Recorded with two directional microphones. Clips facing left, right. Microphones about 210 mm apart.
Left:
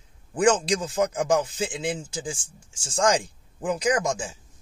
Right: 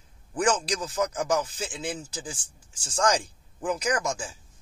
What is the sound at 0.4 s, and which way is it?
Speech, 25° left (ahead or behind).